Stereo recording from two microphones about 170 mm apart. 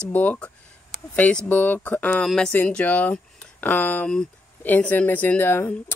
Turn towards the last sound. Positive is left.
turn(degrees=15)  # may be behind; listen again after turning